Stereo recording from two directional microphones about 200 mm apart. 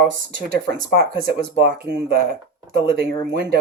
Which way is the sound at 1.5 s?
50° right (ahead or behind).